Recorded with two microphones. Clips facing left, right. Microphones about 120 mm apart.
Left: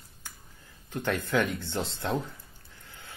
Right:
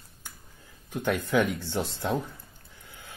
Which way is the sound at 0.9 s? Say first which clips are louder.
Right 2 dB; 15° right (ahead or behind).